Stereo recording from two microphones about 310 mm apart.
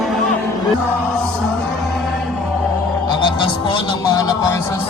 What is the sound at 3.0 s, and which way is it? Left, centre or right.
Music, centre.